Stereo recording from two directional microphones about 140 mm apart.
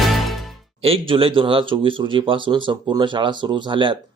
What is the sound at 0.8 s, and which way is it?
Speech, 40° right (ahead or behind).